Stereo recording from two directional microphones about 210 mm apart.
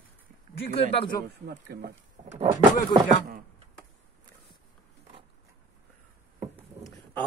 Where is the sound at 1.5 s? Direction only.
45° right (ahead or behind).